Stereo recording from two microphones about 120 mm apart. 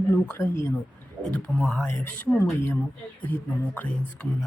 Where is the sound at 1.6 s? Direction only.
5° left (ahead or behind).